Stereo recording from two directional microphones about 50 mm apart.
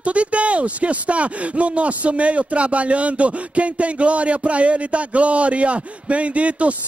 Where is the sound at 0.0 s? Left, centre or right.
Right.